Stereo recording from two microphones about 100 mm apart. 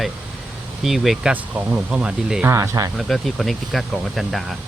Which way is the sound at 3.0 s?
Centre (ahead or behind).